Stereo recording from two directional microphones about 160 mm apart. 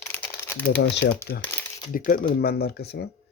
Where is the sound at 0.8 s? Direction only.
90° left.